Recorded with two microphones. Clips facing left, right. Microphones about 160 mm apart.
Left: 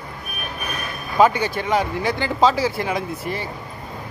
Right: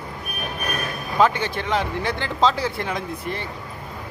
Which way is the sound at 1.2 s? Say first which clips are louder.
Left 3 dB; 10° left (ahead or behind).